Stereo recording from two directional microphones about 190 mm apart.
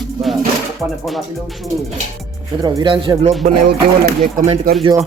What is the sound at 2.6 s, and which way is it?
Speech, 25° right (ahead or behind).